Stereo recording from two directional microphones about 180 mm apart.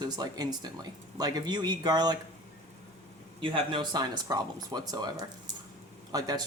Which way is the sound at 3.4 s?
30° right (ahead or behind).